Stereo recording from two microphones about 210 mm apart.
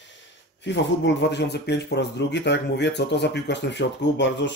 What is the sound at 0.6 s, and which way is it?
Speech, 60° left (ahead or behind).